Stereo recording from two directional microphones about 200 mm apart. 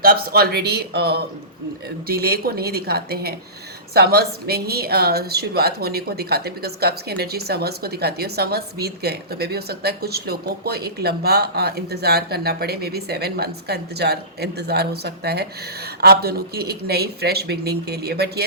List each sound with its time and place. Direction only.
0.0 s speech: 45° right (ahead or behind)